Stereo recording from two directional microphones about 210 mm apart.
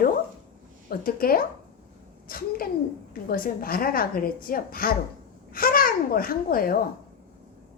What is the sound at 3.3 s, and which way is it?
A woman's voice, 45° left (ahead or behind).